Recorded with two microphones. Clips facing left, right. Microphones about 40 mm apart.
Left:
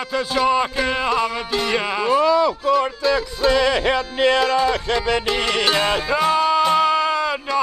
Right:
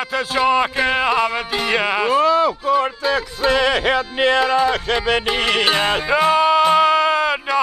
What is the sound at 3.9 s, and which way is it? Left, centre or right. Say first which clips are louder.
Speech: right 1 dB; centre.